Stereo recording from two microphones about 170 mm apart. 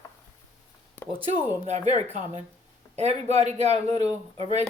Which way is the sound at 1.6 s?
45° right (ahead or behind).